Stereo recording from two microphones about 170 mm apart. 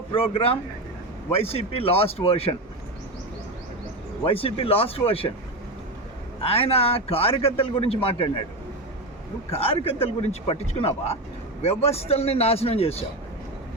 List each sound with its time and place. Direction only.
0.1 s a man's voice: 35° left (ahead or behind)
4.2 s a man's voice: 35° left (ahead or behind)
6.4 s a man's voice: 35° left (ahead or behind)
9.6 s a man's voice: 35° left (ahead or behind)